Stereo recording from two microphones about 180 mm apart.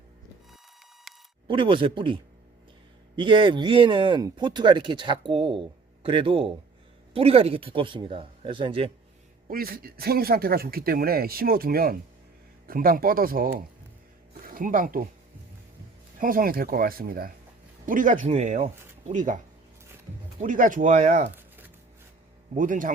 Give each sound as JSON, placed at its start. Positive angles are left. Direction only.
{"t": 1.5, "sound": "speech", "side_deg": -30}
{"t": 3.2, "sound": "a man's voice", "side_deg": -25}
{"t": 9.5, "sound": "a man's voice", "side_deg": -55}
{"t": 16.2, "sound": "a man's voice", "side_deg": -50}
{"t": 20.4, "sound": "speech", "side_deg": -45}
{"t": 21.3, "sound": "a sound", "side_deg": -10}
{"t": 22.5, "sound": "speech", "side_deg": -50}